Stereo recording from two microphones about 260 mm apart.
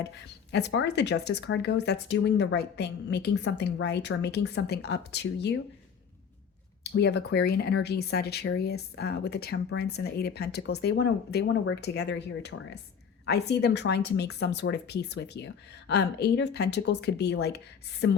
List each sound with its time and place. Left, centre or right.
0.0 s speech: left
6.9 s a woman's voice: left